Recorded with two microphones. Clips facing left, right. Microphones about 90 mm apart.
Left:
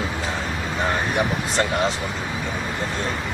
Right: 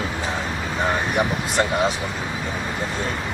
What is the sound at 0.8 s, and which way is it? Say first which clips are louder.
Speech: right 1 dB; 15° right (ahead or behind).